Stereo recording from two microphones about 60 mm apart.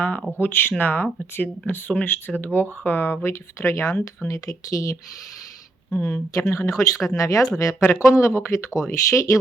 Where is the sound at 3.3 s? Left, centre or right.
Left.